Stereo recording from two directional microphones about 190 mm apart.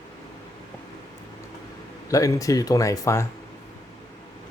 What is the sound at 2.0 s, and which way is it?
Speech, 15° left (ahead or behind).